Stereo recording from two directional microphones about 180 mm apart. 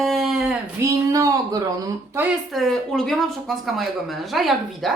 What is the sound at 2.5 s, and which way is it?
A woman's voice, centre (ahead or behind).